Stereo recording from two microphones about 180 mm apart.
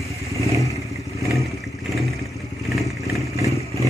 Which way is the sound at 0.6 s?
15° left (ahead or behind).